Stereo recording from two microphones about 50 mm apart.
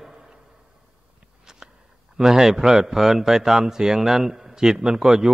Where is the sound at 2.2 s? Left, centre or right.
Centre.